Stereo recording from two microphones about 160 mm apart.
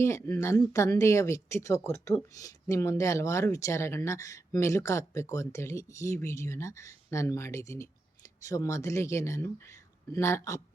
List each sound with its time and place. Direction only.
0.0 s speech: 20° left (ahead or behind)